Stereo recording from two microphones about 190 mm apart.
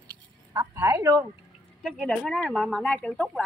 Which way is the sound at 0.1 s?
20° right (ahead or behind).